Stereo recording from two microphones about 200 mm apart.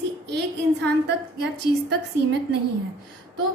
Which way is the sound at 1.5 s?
55° right (ahead or behind).